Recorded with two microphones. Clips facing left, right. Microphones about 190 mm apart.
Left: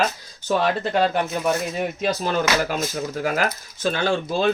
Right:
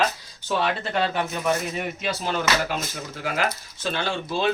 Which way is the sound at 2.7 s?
45° left (ahead or behind).